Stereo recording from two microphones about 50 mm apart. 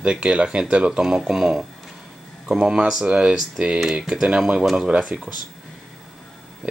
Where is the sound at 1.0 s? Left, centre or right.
Centre; by 3.7 s right.